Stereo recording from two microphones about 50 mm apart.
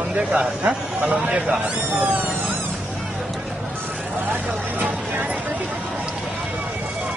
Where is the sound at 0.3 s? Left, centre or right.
Centre.